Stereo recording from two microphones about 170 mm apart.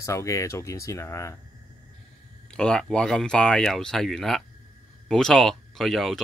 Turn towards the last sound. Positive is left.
turn(degrees=0)  # may be behind; listen again after turning